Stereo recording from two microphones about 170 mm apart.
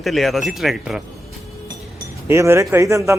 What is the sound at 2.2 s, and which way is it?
Speech, 15° right (ahead or behind).